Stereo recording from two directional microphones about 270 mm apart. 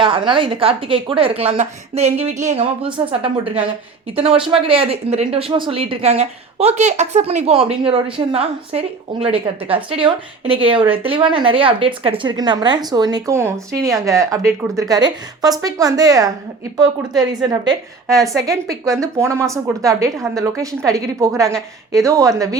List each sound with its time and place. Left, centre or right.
0.0 s a woman's voice: centre
18.1 s a woman's voice: centre
18.4 s a woman's voice: centre